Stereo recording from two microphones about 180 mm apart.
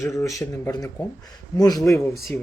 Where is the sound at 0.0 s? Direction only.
15° left (ahead or behind).